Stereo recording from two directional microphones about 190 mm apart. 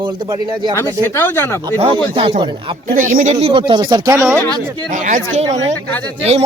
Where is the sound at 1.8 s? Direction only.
30° right (ahead or behind).